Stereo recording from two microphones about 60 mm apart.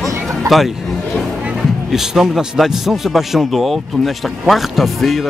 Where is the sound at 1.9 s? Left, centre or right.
Centre.